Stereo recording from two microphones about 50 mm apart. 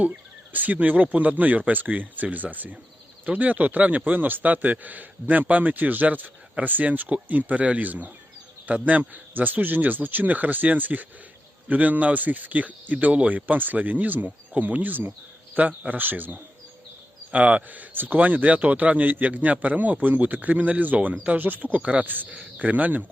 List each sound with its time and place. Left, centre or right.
0.0 s a man's voice: right